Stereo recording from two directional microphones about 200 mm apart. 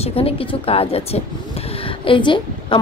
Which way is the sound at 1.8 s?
25° left (ahead or behind).